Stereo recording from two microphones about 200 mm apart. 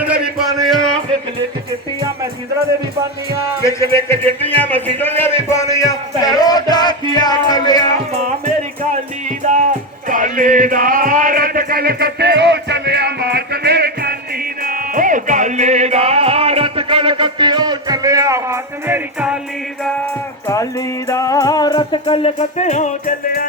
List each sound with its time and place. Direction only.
0.0 s a sound: 5° right (ahead or behind)
3.6 s a man's voice: 15° left (ahead or behind)
7.1 s music: 20° left (ahead or behind)
9.4 s music: 40° right (ahead or behind); by 19.4 s 5° right (ahead or behind)
20.5 s music: 15° left (ahead or behind); by 23.5 s 40° left (ahead or behind)